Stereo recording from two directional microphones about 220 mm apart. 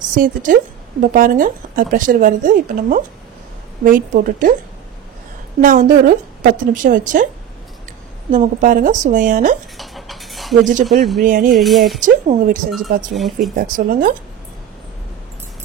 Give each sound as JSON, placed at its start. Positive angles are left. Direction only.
{"t": 0.1, "sound": "speech", "side_deg": -40}
{"t": 5.6, "sound": "speech", "side_deg": -35}
{"t": 8.3, "sound": "speech", "side_deg": -35}
{"t": 9.8, "sound": "dishes", "side_deg": 0}
{"t": 10.6, "sound": "speech", "side_deg": -35}
{"t": 11.5, "sound": "speech", "side_deg": 0}
{"t": 12.0, "sound": "speech", "side_deg": -35}
{"t": 12.7, "sound": "speech", "side_deg": 0}
{"t": 13.6, "sound": "speech", "side_deg": -40}